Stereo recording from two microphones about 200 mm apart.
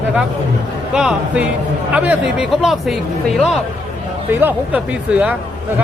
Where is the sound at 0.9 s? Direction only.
5° right (ahead or behind).